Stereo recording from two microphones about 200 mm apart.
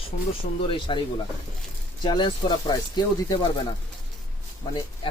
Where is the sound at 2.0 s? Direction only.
20° left (ahead or behind).